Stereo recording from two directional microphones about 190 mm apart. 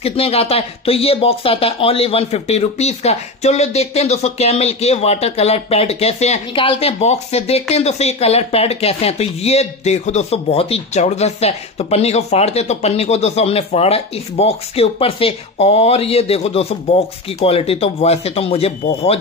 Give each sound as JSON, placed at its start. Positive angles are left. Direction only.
{"t": 0.0, "sound": "speech", "side_deg": 30}